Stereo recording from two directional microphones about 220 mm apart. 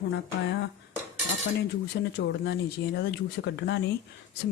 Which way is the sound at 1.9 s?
50° left (ahead or behind).